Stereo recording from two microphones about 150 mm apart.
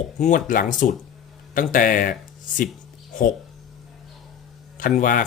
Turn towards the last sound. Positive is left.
turn(degrees=65)  # may be behind; listen again after turning